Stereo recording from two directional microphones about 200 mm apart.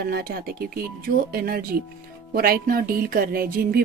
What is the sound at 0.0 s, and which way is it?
Speech, 50° right (ahead or behind).